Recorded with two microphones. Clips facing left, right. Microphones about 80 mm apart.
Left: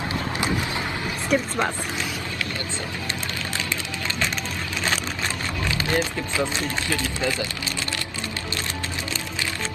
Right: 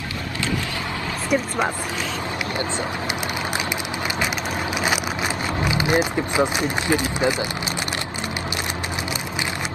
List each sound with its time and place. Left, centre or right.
1.3 s speech: centre
5.7 s speech: centre